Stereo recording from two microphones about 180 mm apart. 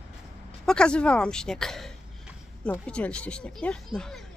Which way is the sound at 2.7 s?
5° left (ahead or behind).